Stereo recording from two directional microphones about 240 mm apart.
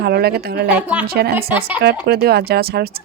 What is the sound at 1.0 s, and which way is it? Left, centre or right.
Speech, right.